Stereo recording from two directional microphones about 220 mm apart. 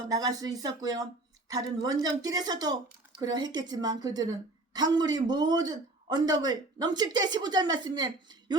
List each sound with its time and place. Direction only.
0.1 s a woman's voice: 15° right (ahead or behind)